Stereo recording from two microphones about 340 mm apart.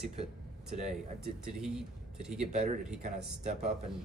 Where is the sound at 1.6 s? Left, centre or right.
Centre.